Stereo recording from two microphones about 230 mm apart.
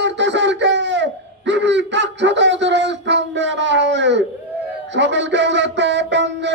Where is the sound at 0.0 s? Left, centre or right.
Right.